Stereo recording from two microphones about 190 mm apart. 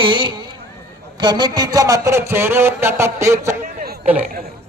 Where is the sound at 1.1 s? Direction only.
25° right (ahead or behind).